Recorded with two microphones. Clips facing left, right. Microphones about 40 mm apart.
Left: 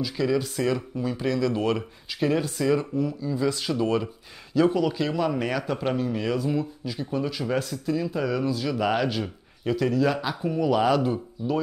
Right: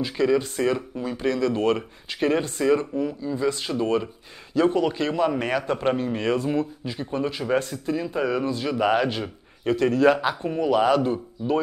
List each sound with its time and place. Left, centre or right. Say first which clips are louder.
0.2 s speech: right 4 dB; right
0.6 s speech: right 2 dB; centre
2.6 s speech: right 3 dB; centre
4.6 s speech: right 1 dB; right
6.8 s speech: right 1 dB; right
9.8 s speech: right 5 dB; right